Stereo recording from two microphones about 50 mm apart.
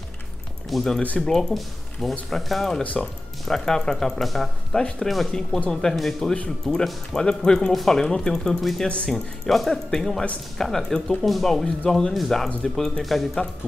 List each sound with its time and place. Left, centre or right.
0.7 s speech: centre
2.8 s speech: left
3.4 s speech: centre
4.7 s speech: centre
5.0 s speech: centre
6.7 s speech: centre
8.8 s speech: left
9.1 s speech: centre